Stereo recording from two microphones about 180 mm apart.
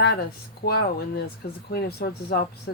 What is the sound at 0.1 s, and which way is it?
Speech, 65° left (ahead or behind).